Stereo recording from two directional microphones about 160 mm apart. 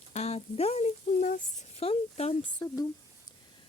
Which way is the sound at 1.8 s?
40° left (ahead or behind).